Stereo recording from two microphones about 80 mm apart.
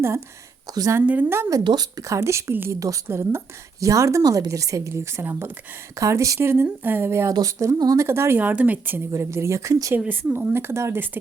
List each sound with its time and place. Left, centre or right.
0.7 s a woman's voice: right
1.0 s speech: right
1.6 s a woman's voice: right
6.0 s a woman's voice: right
6.5 s a woman's voice: right
10.1 s a woman's voice: right